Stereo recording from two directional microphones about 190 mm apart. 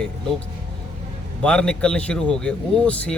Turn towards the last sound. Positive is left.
turn(degrees=5)  # may be behind; listen again after turning